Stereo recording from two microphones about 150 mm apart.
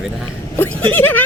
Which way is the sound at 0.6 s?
15° left (ahead or behind).